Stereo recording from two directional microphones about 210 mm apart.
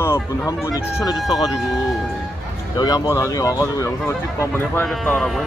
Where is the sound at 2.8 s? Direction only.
20° left (ahead or behind); by 5.5 s centre (ahead or behind).